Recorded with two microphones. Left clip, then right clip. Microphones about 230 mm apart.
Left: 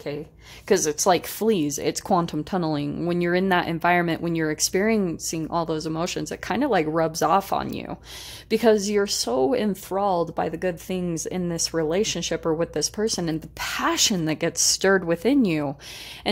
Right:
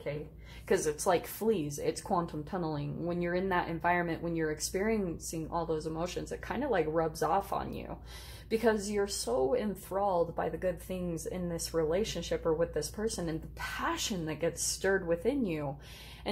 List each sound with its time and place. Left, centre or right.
0.7 s speech: left